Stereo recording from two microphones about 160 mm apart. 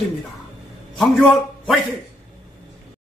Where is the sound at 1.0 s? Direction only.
Centre (ahead or behind).